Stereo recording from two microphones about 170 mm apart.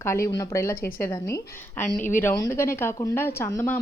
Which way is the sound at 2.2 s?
20° left (ahead or behind).